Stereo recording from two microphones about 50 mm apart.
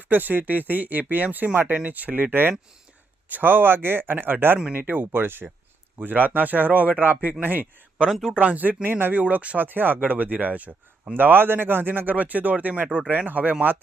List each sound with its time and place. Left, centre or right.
0.1 s speech: right
8.1 s speech: centre
8.4 s speech: right
9.2 s speech: right
11.2 s speech: right